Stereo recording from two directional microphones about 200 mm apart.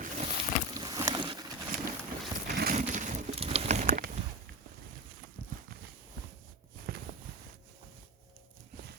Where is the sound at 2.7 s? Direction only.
35° right (ahead or behind).